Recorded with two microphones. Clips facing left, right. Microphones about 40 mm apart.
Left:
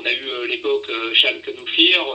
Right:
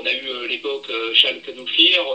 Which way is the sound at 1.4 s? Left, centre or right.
Centre.